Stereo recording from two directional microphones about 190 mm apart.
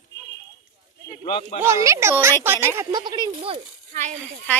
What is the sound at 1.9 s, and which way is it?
Speech, 15° right (ahead or behind).